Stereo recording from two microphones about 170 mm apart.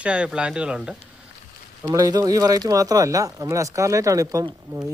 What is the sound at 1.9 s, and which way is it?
Speech, 20° right (ahead or behind).